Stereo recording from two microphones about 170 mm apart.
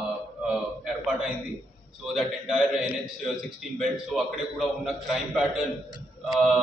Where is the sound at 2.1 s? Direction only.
Centre (ahead or behind).